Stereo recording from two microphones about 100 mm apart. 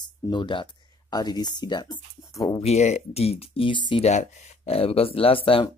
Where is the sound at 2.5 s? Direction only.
90° left; by 4.0 s 55° left (ahead or behind).